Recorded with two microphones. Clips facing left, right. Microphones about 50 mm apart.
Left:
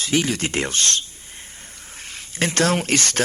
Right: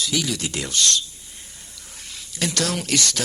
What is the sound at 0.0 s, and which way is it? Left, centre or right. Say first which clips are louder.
Speech: left 4 dB; left.